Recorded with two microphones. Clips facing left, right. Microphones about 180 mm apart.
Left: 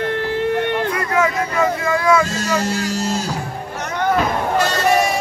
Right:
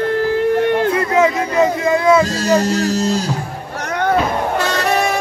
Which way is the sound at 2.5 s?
40° right (ahead or behind).